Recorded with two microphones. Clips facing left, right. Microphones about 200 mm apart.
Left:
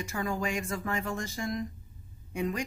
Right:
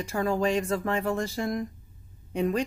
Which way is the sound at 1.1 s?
60° right (ahead or behind).